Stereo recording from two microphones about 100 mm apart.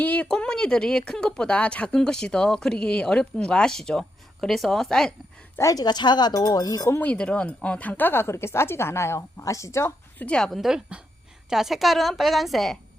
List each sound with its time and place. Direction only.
0.0 s speech: 15° left (ahead or behind)
5.5 s speech: 35° left (ahead or behind)
7.0 s speech: 10° left (ahead or behind); by 10.2 s 25° left (ahead or behind)
10.2 s a woman's voice: 5° left (ahead or behind)